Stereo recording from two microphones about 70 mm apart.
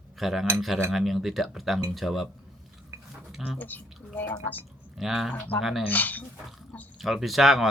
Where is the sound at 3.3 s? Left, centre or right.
Centre.